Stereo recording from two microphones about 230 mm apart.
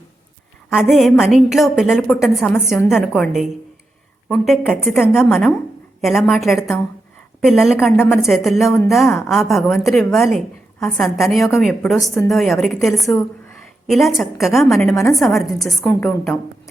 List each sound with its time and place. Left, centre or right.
0.8 s a woman's voice: centre